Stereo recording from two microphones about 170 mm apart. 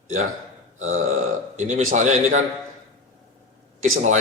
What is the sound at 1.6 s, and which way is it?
Speech, 45° right (ahead or behind).